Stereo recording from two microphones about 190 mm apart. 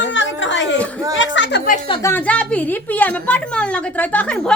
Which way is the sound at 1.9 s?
15° left (ahead or behind).